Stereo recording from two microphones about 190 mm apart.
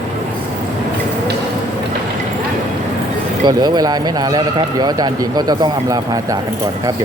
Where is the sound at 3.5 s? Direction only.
20° right (ahead or behind).